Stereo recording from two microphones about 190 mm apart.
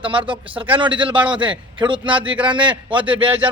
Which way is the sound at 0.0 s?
25° right (ahead or behind).